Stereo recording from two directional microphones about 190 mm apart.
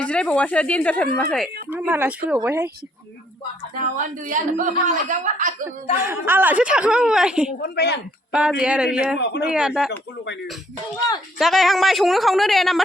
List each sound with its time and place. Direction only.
0.0 s speech: 5° left (ahead or behind)
1.7 s speech: 10° right (ahead or behind)
3.9 s a woman's voice: 45° right (ahead or behind)
6.0 s speech: 10° right (ahead or behind)
7.6 s speech: 60° left (ahead or behind)
8.3 s speech: 5° right (ahead or behind)
9.1 s speech: 65° left (ahead or behind)
9.4 s speech: 5° right (ahead or behind)
11.3 s speech: centre (ahead or behind)